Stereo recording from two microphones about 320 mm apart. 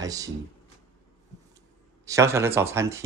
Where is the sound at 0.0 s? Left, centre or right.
Centre.